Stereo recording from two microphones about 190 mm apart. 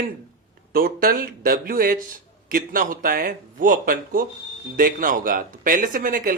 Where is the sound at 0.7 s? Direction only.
50° right (ahead or behind).